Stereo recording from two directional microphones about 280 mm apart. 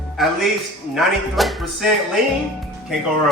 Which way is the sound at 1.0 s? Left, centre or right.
Centre.